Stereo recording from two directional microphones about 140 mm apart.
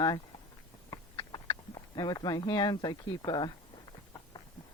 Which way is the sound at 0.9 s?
30° left (ahead or behind).